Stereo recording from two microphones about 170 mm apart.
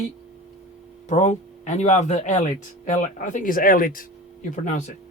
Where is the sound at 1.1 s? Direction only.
40° left (ahead or behind).